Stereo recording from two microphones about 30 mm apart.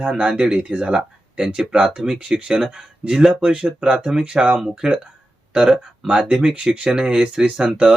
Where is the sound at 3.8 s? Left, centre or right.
Right.